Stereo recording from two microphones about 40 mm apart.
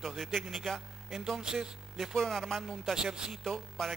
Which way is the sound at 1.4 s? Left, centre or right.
Centre.